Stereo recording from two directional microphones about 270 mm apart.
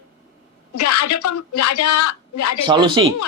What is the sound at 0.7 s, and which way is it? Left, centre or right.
Speech, left.